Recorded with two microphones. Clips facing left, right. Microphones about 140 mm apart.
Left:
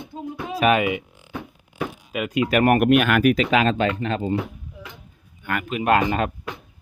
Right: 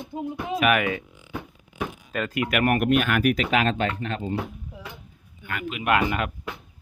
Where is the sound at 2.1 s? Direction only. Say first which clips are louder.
Left 3 dB; 10° left (ahead or behind).